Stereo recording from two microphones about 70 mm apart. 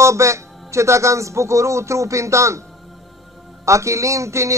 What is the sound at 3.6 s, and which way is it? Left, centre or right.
Speech, right.